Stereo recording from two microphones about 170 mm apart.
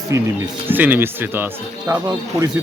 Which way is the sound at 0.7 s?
10° right (ahead or behind).